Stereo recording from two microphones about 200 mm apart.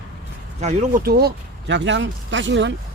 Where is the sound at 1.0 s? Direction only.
55° right (ahead or behind).